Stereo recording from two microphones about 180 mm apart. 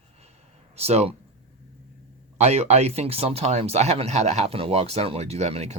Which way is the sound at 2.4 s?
35° right (ahead or behind).